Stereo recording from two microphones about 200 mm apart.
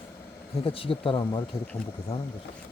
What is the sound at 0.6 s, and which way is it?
Speech, 25° left (ahead or behind).